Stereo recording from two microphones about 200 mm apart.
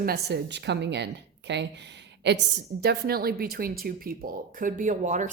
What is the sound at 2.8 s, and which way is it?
Speech, 50° right (ahead or behind).